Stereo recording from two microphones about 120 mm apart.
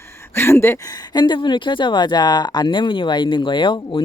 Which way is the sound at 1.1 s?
40° left (ahead or behind).